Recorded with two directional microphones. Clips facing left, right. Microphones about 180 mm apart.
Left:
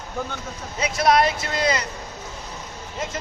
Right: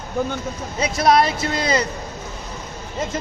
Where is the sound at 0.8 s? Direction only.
35° right (ahead or behind).